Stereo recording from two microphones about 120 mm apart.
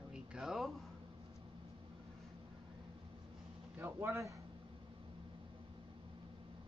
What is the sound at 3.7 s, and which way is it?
Speech, 20° right (ahead or behind).